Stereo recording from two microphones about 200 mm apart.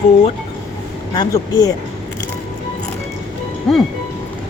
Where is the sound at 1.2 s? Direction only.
20° left (ahead or behind).